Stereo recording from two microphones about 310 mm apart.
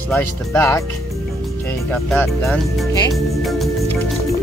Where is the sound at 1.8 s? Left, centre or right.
Centre.